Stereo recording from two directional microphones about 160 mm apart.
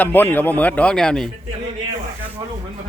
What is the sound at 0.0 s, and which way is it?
Speech, 10° left (ahead or behind).